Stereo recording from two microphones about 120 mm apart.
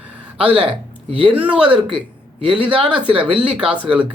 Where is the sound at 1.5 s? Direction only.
10° right (ahead or behind).